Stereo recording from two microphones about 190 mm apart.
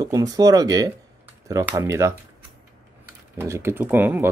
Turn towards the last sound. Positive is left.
turn(degrees=-10)  # may be behind; listen again after turning